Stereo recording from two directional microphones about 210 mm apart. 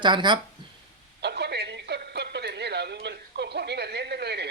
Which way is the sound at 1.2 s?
50° right (ahead or behind).